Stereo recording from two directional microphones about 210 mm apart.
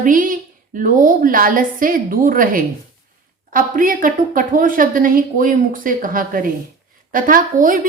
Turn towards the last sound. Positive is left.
turn(degrees=-40)  # may be behind; listen again after turning